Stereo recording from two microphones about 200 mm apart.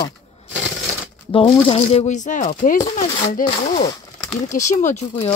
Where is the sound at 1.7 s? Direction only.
30° left (ahead or behind).